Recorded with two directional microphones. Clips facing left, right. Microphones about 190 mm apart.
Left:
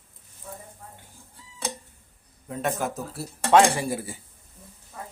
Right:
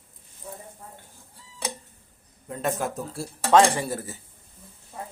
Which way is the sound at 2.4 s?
Centre (ahead or behind).